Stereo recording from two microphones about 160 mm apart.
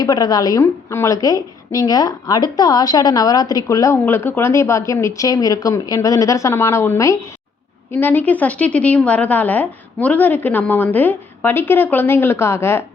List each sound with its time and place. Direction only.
0.0 s a woman's voice: 25° left (ahead or behind)